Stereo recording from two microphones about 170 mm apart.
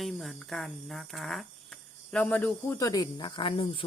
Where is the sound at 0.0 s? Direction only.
Centre (ahead or behind).